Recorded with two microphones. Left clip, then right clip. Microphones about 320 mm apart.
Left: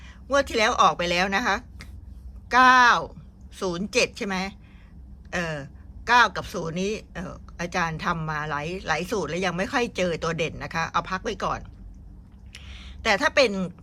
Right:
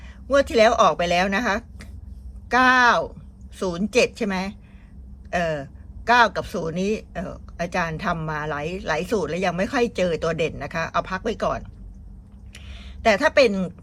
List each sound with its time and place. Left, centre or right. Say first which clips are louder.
0.3 s speech: right 5 dB; centre